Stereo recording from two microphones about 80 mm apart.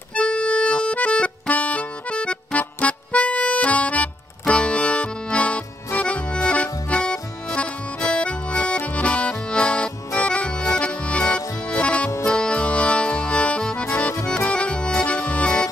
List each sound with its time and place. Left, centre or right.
0.1 s accordion: centre